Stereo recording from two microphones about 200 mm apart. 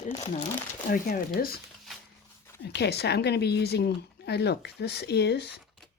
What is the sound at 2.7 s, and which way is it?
Speech, 55° left (ahead or behind).